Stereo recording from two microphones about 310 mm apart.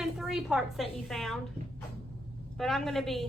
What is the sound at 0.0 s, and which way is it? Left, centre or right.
A woman's voice, centre.